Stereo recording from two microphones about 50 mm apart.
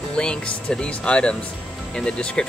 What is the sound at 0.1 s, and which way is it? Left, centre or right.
Speech, centre.